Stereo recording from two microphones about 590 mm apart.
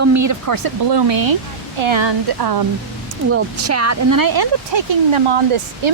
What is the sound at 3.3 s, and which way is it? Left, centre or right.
Speech, right.